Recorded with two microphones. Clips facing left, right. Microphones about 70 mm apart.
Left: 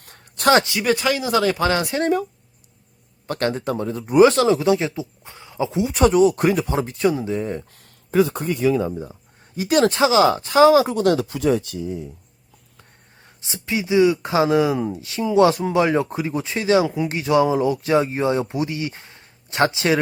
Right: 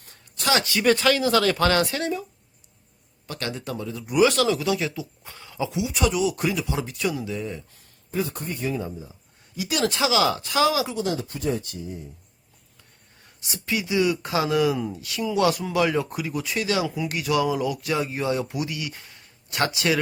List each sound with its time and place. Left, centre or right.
0.0 s a sound: left
0.5 s speech: left
0.8 s speech: centre
3.2 s speech: left
5.8 s speech: left
9.6 s speech: left
10.9 s speech: left
13.2 s speech: left